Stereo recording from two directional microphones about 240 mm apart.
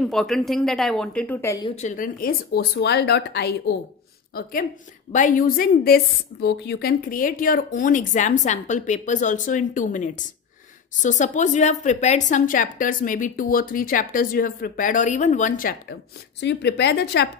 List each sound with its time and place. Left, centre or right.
0.0 s a woman's voice: centre
1.8 s a woman's voice: left